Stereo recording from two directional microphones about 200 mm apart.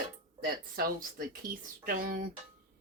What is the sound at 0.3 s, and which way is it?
Speech, 45° right (ahead or behind).